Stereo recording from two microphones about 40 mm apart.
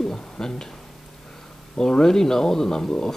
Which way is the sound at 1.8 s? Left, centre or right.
Centre.